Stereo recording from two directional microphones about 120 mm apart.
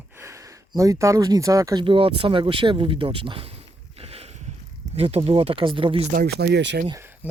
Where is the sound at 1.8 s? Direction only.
50° right (ahead or behind).